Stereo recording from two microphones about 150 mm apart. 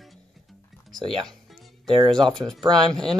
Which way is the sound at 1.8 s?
30° right (ahead or behind).